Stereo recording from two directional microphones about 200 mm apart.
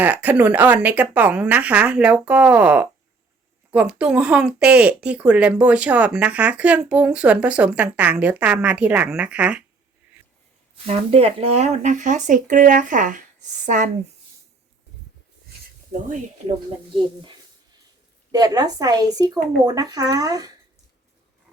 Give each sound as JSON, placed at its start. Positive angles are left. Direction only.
{"t": 0.0, "sound": "speech", "side_deg": -10}
{"t": 10.8, "sound": "speech", "side_deg": -30}
{"t": 18.3, "sound": "a woman's voice", "side_deg": -20}